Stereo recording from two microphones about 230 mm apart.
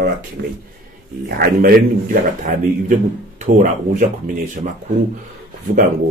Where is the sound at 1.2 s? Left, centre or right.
Right.